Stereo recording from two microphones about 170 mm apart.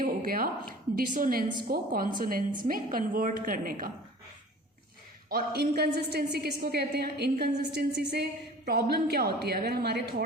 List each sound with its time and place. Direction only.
0.0 s a sound: 55° right (ahead or behind)
0.9 s a woman's voice: 55° right (ahead or behind)
5.3 s a woman's voice: 65° right (ahead or behind)